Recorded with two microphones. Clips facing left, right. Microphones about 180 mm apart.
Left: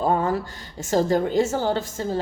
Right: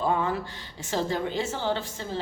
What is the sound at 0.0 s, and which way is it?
Speech, 45° left (ahead or behind).